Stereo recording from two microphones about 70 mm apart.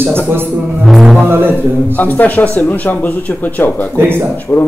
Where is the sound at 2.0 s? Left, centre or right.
Left.